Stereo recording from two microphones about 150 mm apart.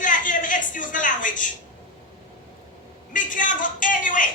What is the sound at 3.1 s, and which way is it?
Speech, 60° left (ahead or behind).